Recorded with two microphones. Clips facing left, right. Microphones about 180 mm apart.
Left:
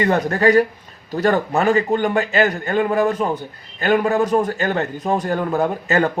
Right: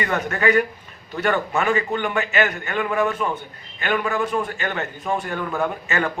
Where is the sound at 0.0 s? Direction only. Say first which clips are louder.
Left 5 dB; 35° left (ahead or behind).